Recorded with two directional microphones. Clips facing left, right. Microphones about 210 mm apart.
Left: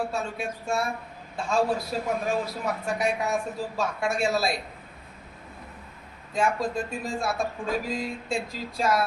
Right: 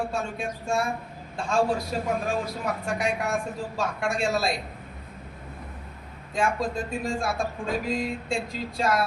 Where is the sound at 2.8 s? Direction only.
Centre (ahead or behind).